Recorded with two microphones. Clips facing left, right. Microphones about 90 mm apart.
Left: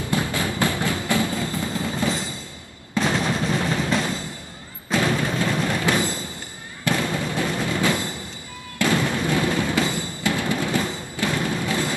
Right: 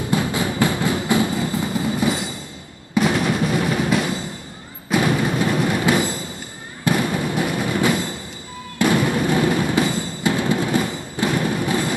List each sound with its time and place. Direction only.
0.1 s music: 20° right (ahead or behind)